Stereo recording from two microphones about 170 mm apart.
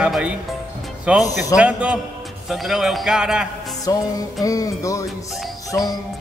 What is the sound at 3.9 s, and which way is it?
Music, 20° left (ahead or behind).